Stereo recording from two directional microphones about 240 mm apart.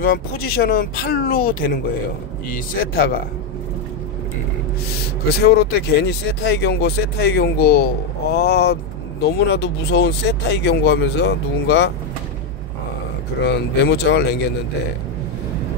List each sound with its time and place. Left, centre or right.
0.0 s speech: left
5.4 s speech: left
13.4 s speech: left